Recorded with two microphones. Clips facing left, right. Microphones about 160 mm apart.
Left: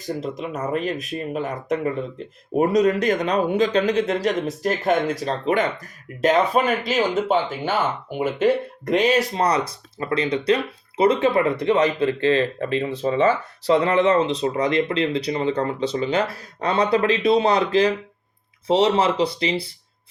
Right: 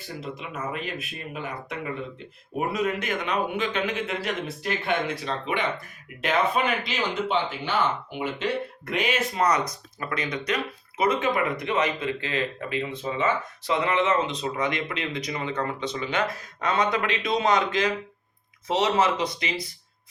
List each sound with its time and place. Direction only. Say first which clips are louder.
0.0 s speech: left 8 dB; 40° left (ahead or behind)